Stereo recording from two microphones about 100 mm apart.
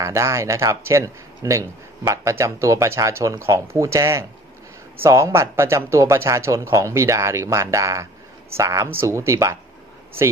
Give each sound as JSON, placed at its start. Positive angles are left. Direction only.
{"t": 0.0, "sound": "speech", "side_deg": -30}